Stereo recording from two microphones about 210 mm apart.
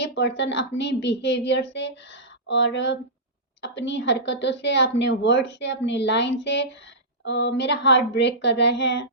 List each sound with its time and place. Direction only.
0.0 s speech: 55° left (ahead or behind)